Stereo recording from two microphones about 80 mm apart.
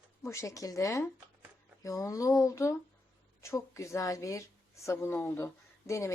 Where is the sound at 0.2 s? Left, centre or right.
Left.